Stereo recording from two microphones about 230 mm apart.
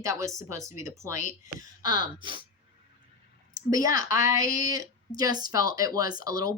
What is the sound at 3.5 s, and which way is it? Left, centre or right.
A woman's voice, centre.